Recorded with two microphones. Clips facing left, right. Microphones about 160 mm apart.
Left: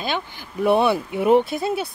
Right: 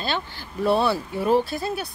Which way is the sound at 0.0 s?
15° left (ahead or behind).